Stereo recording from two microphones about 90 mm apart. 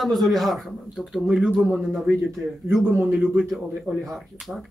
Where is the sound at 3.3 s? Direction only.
Centre (ahead or behind).